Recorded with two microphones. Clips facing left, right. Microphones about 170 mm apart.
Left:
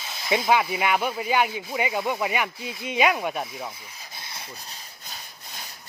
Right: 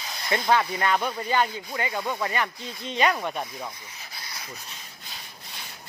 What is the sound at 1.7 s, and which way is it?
Speech, 20° left (ahead or behind).